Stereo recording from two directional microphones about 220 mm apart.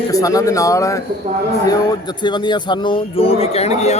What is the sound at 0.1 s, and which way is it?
A man's voice, 15° left (ahead or behind).